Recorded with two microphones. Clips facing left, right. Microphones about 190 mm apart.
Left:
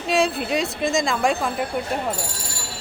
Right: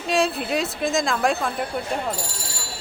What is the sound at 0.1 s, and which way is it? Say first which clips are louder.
Speech: left 1 dB; centre (ahead or behind).